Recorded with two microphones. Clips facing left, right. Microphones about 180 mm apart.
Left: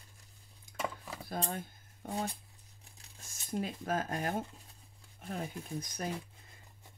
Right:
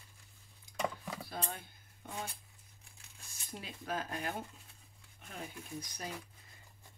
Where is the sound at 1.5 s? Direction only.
40° left (ahead or behind).